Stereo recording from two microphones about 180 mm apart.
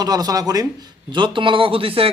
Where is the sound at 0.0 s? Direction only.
20° right (ahead or behind).